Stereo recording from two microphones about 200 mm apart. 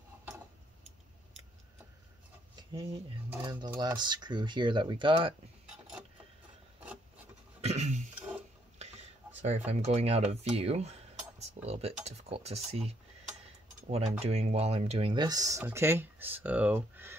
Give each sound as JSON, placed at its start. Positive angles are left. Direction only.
{"t": 3.4, "sound": "speech", "side_deg": -20}
{"t": 7.6, "sound": "a sound", "side_deg": -35}
{"t": 9.7, "sound": "speech", "side_deg": -35}